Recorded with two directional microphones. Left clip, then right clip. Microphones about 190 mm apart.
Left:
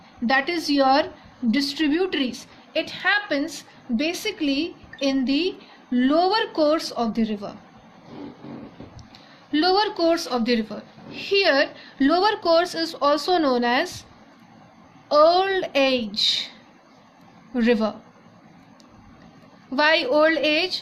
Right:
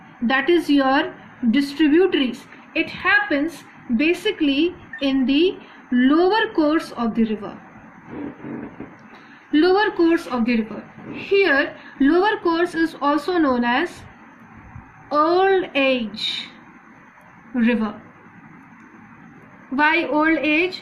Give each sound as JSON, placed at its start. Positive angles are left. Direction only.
{"t": 0.3, "sound": "a woman's voice", "side_deg": 65}
{"t": 9.5, "sound": "a woman's voice", "side_deg": 65}
{"t": 15.1, "sound": "a woman's voice", "side_deg": 65}
{"t": 17.5, "sound": "a woman's voice", "side_deg": 70}
{"t": 19.7, "sound": "a woman's voice", "side_deg": 70}